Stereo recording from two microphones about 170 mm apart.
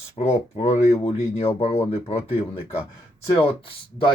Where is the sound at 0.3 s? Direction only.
35° left (ahead or behind).